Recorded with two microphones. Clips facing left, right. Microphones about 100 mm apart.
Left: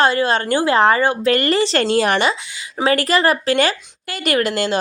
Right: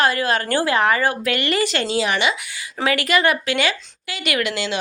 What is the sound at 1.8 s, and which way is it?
Speech, 50° left (ahead or behind).